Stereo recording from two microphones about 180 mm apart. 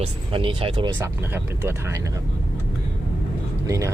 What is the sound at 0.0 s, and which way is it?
Speech, 30° right (ahead or behind).